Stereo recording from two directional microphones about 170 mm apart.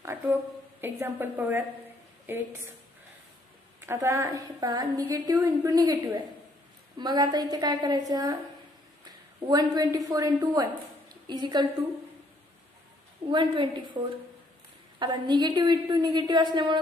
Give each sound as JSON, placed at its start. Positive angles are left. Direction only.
{"t": 0.0, "sound": "a woman's voice", "side_deg": -15}
{"t": 3.8, "sound": "a woman's voice", "side_deg": -15}
{"t": 9.5, "sound": "a woman's voice", "side_deg": -20}
{"t": 13.3, "sound": "a woman's voice", "side_deg": -25}
{"t": 15.0, "sound": "a woman's voice", "side_deg": -25}